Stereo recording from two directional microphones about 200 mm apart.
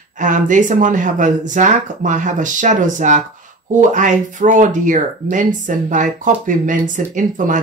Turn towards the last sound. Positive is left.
turn(degrees=-40)  # may be behind; listen again after turning